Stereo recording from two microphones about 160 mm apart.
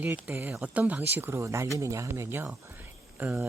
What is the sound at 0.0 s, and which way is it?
Speech, 10° right (ahead or behind).